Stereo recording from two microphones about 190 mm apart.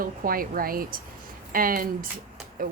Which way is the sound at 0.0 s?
50° right (ahead or behind).